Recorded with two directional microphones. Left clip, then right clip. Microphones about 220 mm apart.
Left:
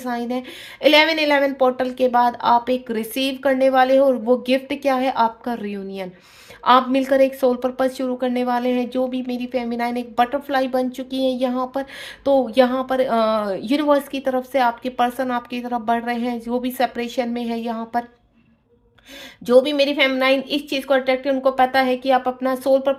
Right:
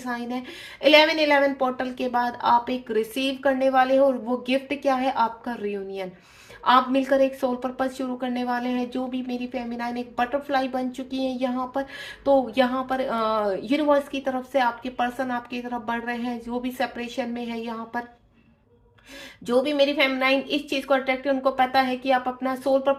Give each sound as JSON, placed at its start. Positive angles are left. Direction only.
{"t": 0.0, "sound": "speech", "side_deg": 45}
{"t": 19.5, "sound": "speech", "side_deg": 45}